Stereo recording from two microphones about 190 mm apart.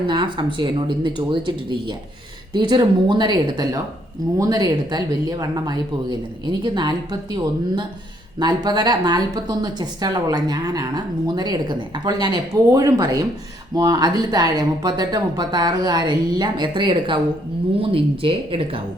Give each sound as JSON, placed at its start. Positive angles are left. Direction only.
{"t": 0.1, "sound": "speech", "side_deg": -25}